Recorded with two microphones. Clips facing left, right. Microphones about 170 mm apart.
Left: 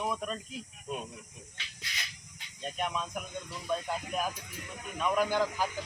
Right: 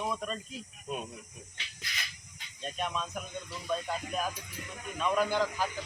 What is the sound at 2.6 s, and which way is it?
Speech, 10° left (ahead or behind).